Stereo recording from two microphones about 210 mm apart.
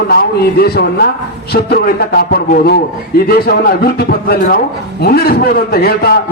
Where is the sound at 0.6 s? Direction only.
50° left (ahead or behind).